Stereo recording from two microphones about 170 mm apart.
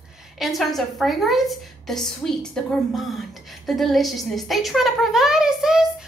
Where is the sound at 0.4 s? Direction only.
Centre (ahead or behind).